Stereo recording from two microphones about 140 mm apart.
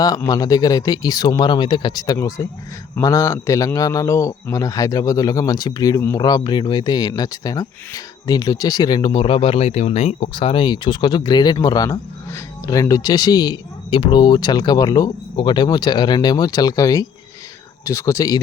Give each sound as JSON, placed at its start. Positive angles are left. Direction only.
{"t": 0.3, "sound": "a man's voice", "side_deg": 25}